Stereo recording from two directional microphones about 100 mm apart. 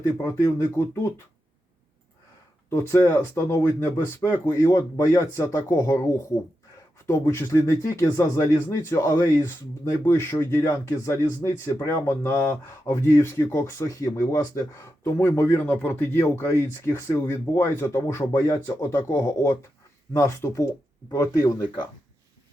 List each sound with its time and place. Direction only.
0.2 s speech: 30° left (ahead or behind)
2.6 s speech: 30° left (ahead or behind)